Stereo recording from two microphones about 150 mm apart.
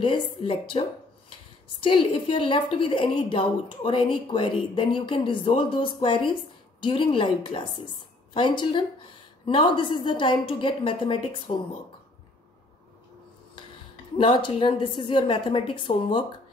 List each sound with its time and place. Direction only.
0.0 s a woman's voice: 35° left (ahead or behind)
14.1 s a woman's voice: 35° left (ahead or behind)